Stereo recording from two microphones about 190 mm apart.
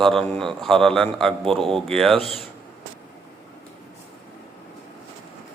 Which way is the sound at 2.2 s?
30° left (ahead or behind).